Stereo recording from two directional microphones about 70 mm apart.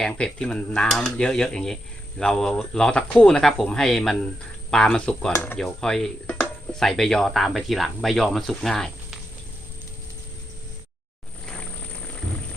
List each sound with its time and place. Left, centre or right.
0.0 s speech: centre
6.2 s a sound: centre
6.7 s speech: centre